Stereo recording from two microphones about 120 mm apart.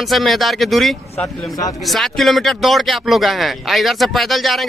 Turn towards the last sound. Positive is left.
turn(degrees=0)  # may be behind; listen again after turning